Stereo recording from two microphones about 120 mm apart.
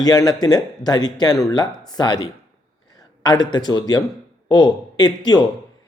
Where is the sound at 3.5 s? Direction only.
35° left (ahead or behind).